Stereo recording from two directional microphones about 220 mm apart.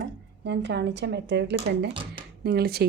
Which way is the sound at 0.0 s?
50° right (ahead or behind).